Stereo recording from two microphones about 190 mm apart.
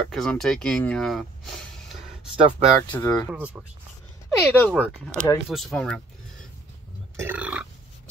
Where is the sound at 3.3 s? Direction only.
5° right (ahead or behind).